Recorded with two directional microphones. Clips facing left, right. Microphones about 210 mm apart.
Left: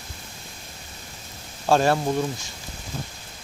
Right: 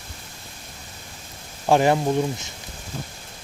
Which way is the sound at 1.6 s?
15° right (ahead or behind).